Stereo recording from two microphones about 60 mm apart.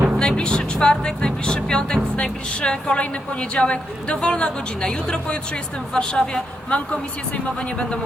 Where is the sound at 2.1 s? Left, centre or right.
Centre.